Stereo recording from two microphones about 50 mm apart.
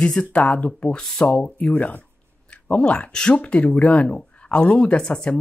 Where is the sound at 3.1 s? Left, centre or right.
Centre.